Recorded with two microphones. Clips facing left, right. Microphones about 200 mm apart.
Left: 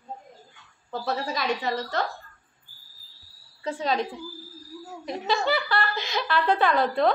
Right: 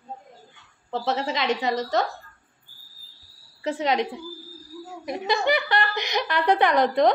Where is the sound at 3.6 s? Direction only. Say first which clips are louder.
Right 3 dB; 20° right (ahead or behind).